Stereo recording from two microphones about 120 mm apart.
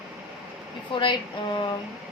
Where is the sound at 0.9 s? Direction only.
40° left (ahead or behind).